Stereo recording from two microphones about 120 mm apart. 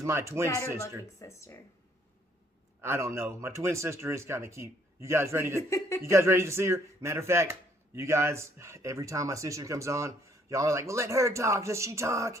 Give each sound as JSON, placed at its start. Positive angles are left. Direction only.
{"t": 0.0, "sound": "speech", "side_deg": -25}
{"t": 1.2, "sound": "speech", "side_deg": 25}
{"t": 2.8, "sound": "speech", "side_deg": -20}